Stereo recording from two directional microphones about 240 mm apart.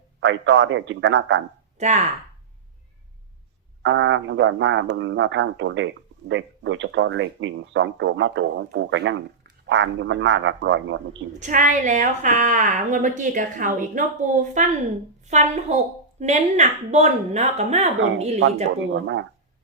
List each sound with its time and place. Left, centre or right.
0.2 s speech: right
1.8 s speech: right
3.8 s speech: right
11.3 s a woman's voice: right